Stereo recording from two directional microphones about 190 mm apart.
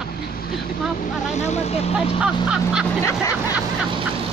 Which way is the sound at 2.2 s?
5° right (ahead or behind).